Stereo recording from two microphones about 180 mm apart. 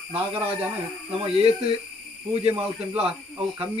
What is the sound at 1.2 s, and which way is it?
Speech, 35° right (ahead or behind).